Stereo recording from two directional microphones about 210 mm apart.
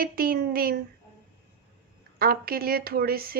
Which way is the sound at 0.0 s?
45° right (ahead or behind).